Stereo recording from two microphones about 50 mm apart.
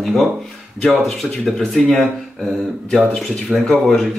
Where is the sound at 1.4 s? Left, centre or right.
Centre.